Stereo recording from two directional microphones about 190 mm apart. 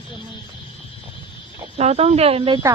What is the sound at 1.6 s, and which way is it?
Speech, 35° right (ahead or behind).